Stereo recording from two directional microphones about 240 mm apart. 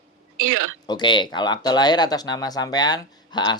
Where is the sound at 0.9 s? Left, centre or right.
Centre.